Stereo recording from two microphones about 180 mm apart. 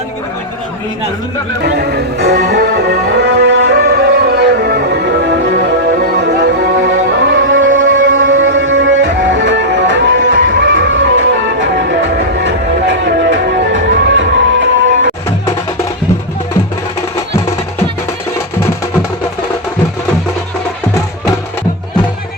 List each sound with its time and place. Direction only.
1.6 s speech: 65° right (ahead or behind)
3.2 s music: 70° right (ahead or behind)